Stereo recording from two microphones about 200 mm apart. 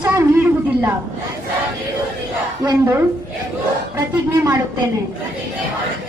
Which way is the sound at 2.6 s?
15° right (ahead or behind).